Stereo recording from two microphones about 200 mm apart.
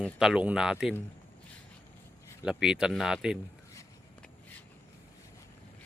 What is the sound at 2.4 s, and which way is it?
Speech, 5° right (ahead or behind).